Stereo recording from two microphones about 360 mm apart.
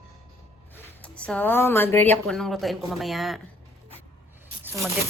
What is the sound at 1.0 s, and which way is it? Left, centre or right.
Speech, centre.